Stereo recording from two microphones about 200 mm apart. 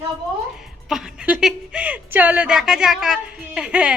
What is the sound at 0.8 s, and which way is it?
A woman's voice, 5° right (ahead or behind).